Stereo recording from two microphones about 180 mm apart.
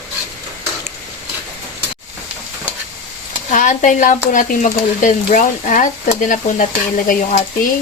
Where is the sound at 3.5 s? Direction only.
45° left (ahead or behind).